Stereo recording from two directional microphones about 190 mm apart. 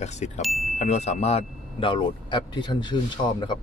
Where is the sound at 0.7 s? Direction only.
35° left (ahead or behind).